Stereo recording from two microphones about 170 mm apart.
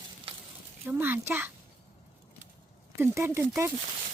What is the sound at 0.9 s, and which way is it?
Speech, 10° right (ahead or behind).